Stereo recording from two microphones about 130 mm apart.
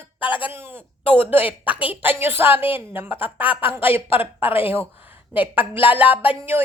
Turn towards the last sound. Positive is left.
turn(degrees=-15)  # may be behind; listen again after turning